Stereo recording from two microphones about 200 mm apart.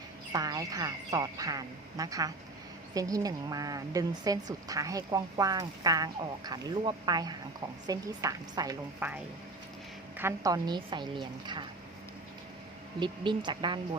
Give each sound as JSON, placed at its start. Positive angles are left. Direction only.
{"t": 0.3, "sound": "speech", "side_deg": -20}
{"t": 10.2, "sound": "a woman's voice", "side_deg": -15}
{"t": 13.0, "sound": "a woman's voice", "side_deg": -25}